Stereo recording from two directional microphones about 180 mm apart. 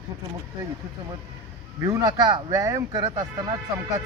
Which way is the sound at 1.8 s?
20° right (ahead or behind).